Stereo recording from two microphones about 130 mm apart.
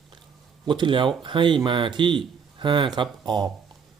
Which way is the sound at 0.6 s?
35° right (ahead or behind).